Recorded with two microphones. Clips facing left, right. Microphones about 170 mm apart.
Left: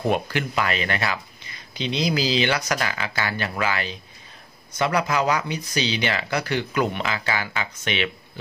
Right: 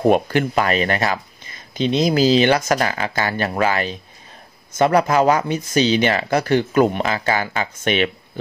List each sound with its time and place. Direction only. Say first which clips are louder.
0.0 s speech: right 8 dB; 50° right (ahead or behind)